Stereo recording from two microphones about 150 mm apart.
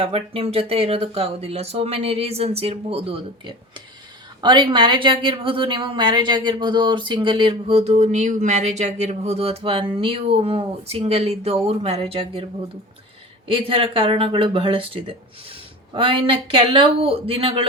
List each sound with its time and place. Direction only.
0.0 s speech: 40° right (ahead or behind)
13.5 s speech: 35° right (ahead or behind)